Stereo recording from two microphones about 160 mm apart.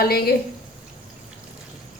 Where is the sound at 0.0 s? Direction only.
75° left (ahead or behind).